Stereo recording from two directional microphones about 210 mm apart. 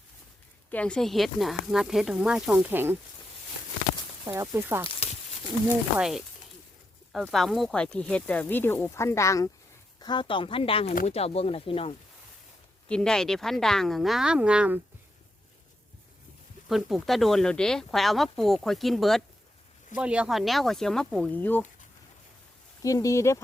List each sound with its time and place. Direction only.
0.7 s speech: 5° left (ahead or behind)
4.3 s speech: 15° right (ahead or behind)
6.0 s speech: centre (ahead or behind); by 11.9 s 25° left (ahead or behind)
12.9 s speech: 5° left (ahead or behind)
16.6 s speech: centre (ahead or behind)
22.8 s speech: 15° left (ahead or behind)